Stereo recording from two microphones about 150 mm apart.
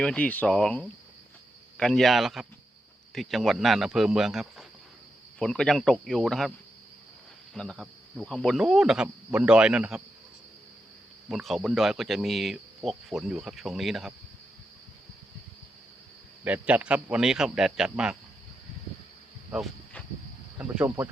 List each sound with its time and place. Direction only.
0.0 s speech: 10° left (ahead or behind)
7.5 s speech: 5° left (ahead or behind)
11.3 s speech: centre (ahead or behind)
16.4 s speech: 10° right (ahead or behind)
20.6 s speech: 10° right (ahead or behind)